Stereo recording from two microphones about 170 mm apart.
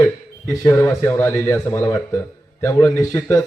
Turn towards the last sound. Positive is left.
turn(degrees=20)  # may be behind; listen again after turning